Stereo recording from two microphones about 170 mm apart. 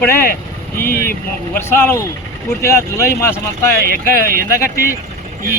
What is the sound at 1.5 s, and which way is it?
Speech, 15° left (ahead or behind).